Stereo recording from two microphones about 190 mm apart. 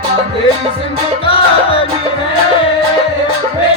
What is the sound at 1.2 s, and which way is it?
Music, 30° left (ahead or behind).